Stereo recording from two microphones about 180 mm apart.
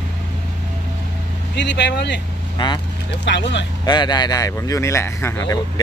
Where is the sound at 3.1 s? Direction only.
80° left.